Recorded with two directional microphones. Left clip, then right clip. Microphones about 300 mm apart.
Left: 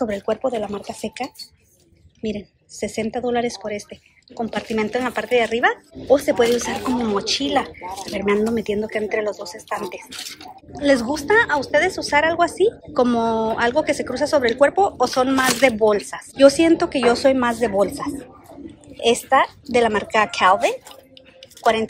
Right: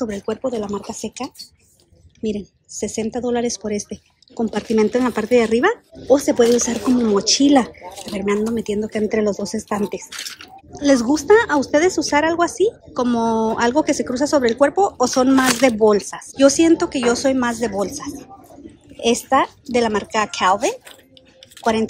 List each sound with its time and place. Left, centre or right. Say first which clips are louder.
0.0 s speech: left 2 dB; centre